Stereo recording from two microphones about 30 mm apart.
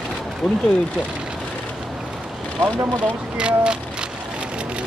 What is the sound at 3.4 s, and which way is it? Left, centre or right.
Speech, right.